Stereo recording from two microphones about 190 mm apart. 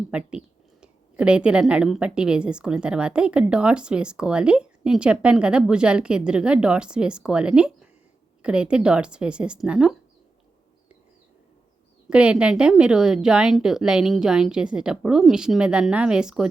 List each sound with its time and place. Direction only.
0.1 s a woman's voice: 5° right (ahead or behind)
12.0 s a woman's voice: 5° right (ahead or behind)